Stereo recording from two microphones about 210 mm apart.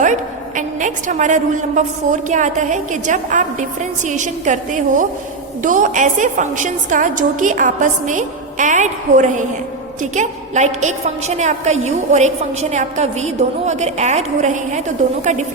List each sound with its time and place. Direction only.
0.0 s a woman's voice: 35° right (ahead or behind)